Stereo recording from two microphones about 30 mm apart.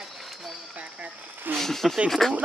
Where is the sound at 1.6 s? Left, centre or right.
Centre.